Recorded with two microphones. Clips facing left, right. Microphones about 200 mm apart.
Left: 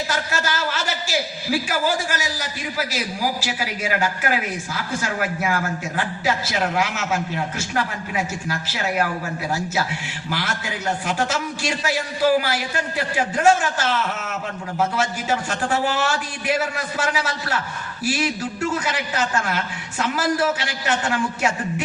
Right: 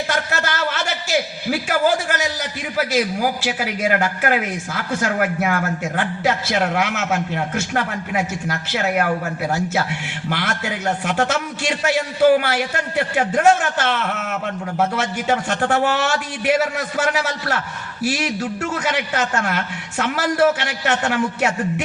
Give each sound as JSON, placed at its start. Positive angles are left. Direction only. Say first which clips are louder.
{"t": 0.1, "sound": "a man's voice", "louder": "right 2 dB", "side_deg": -65}